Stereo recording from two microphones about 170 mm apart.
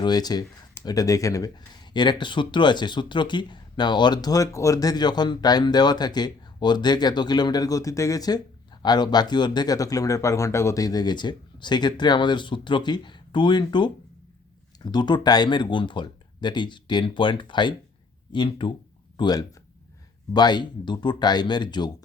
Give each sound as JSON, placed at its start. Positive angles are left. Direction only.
{"t": 0.0, "sound": "speech", "side_deg": 25}